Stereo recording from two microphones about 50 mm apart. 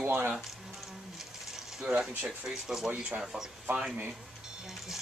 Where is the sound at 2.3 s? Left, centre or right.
Centre.